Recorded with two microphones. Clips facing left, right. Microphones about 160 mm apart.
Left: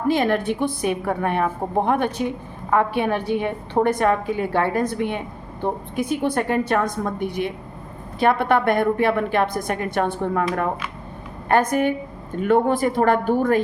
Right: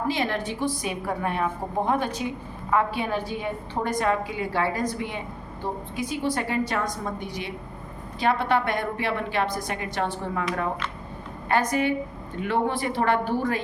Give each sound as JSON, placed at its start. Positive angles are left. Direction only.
{"t": 0.1, "sound": "a woman's voice", "side_deg": 50}
{"t": 11.4, "sound": "a woman's voice", "side_deg": 55}